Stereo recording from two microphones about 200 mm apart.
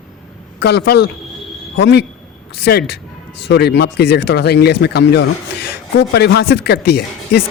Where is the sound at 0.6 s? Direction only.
55° left (ahead or behind).